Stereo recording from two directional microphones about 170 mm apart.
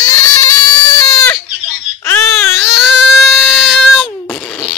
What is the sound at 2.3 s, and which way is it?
Baby cry, 15° left (ahead or behind).